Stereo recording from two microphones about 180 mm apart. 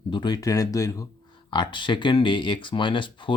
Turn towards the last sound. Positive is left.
turn(degrees=25)  # may be behind; listen again after turning